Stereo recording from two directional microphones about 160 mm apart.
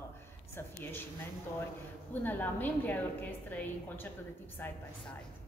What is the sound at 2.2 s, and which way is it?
A woman's voice, 10° left (ahead or behind).